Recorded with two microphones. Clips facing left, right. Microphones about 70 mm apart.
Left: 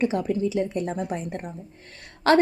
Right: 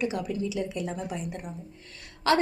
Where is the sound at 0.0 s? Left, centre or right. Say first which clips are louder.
Left 6 dB; left.